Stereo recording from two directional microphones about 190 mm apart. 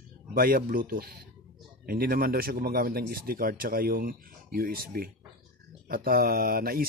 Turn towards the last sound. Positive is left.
turn(degrees=-50)  # may be behind; listen again after turning